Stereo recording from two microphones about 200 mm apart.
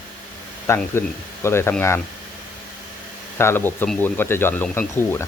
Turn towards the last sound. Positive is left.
turn(degrees=10)  # may be behind; listen again after turning